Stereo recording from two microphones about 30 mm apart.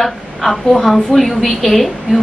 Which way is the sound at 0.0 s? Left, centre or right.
Centre.